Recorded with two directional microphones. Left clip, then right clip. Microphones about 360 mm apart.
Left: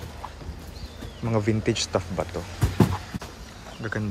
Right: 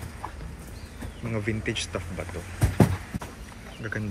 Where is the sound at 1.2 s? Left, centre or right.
Centre.